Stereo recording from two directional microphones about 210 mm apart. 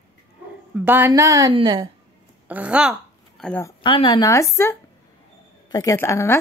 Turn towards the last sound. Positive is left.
turn(degrees=10)  # may be behind; listen again after turning